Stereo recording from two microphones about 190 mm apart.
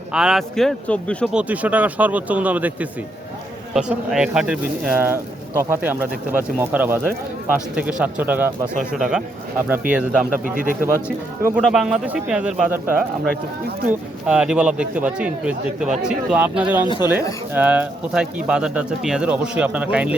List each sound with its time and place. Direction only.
0.1 s speech: 5° right (ahead or behind)
1.4 s speech: 10° right (ahead or behind)
3.8 s speech: 5° right (ahead or behind)
10.4 s speech: 45° right (ahead or behind)
11.4 s speech: 5° right (ahead or behind)
14.3 s speech: 5° right (ahead or behind)